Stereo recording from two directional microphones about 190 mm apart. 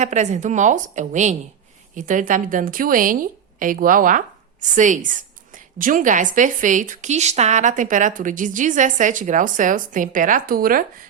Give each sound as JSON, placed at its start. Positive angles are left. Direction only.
{"t": 0.0, "sound": "a woman's voice", "side_deg": -40}